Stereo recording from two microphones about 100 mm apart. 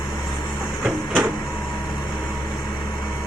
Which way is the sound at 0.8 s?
20° right (ahead or behind).